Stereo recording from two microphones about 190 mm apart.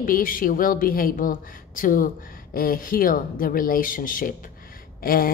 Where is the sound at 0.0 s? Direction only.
45° left (ahead or behind).